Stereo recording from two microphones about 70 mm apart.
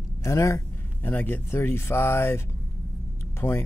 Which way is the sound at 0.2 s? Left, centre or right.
Left.